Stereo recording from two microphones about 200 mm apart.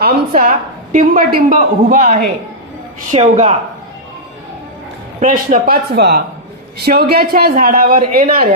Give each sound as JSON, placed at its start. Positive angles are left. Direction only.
{"t": 0.0, "sound": "a woman's voice", "side_deg": -45}
{"t": 5.2, "sound": "speech", "side_deg": -45}